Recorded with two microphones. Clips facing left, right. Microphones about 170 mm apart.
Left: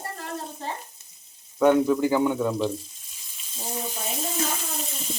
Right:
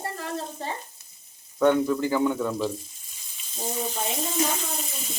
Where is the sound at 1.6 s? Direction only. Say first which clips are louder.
Left 2 dB; 10° left (ahead or behind).